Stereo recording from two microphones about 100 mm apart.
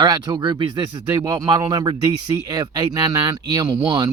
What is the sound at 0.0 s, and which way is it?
Speech, 45° right (ahead or behind).